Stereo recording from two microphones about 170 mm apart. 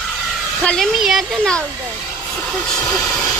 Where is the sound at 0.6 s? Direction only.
5° left (ahead or behind).